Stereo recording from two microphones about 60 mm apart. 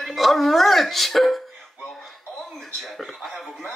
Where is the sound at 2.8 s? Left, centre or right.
Centre.